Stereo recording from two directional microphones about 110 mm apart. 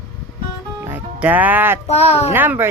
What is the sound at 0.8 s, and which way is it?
Music, 15° right (ahead or behind).